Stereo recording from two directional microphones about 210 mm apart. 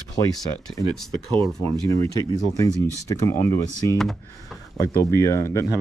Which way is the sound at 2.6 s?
15° left (ahead or behind).